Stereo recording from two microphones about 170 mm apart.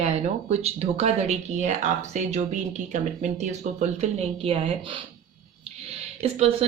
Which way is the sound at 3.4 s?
45° right (ahead or behind).